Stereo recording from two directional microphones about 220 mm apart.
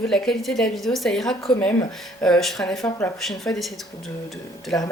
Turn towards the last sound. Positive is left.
turn(degrees=0)  # may be behind; listen again after turning